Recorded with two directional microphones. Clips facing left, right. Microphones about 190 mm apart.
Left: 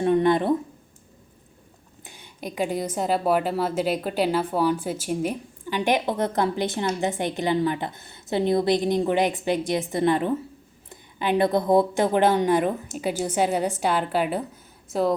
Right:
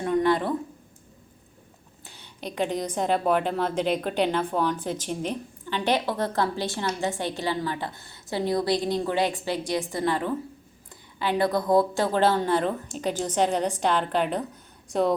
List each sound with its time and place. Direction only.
0.0 s speech: 20° left (ahead or behind)
2.0 s a woman's voice: 15° left (ahead or behind)